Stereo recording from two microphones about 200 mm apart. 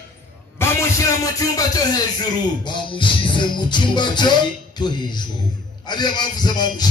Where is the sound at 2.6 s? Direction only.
25° left (ahead or behind).